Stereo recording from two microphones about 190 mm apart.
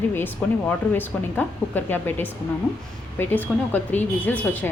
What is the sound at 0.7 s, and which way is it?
Speech, 10° left (ahead or behind).